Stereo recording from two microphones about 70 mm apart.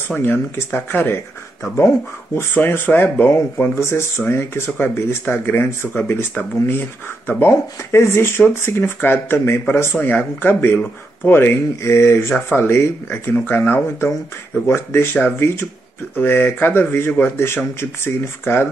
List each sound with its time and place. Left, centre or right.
0.1 s speech: left
9.9 s speech: left